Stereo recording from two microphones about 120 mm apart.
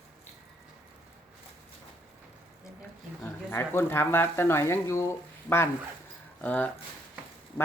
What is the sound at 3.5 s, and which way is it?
Speech, 20° left (ahead or behind).